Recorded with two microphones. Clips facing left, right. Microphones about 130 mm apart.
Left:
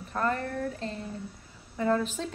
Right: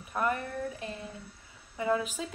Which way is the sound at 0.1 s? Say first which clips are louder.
Left 1 dB; 15° right (ahead or behind).